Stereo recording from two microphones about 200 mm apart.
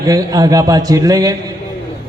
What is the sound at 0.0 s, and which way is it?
A man's voice, 15° right (ahead or behind).